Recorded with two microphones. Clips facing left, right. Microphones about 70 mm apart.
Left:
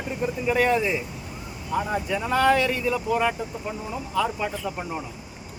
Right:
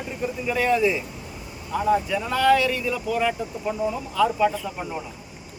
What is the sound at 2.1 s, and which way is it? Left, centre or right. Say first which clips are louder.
Speech: left 4 dB; left.